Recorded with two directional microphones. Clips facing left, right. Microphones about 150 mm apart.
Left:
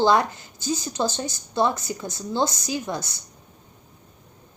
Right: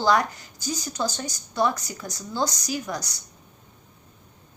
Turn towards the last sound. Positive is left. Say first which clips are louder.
# left 2 dB
turn(degrees=25)  # may be behind; listen again after turning